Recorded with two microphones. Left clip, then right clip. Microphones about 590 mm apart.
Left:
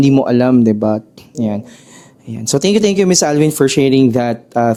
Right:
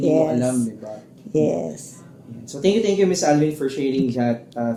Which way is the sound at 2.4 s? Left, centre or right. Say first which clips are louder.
Left 7 dB; left.